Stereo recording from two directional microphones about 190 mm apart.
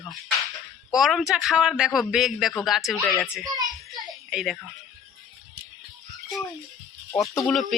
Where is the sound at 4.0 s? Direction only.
Centre (ahead or behind).